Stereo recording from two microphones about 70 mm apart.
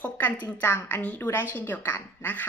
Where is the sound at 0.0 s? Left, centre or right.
Left.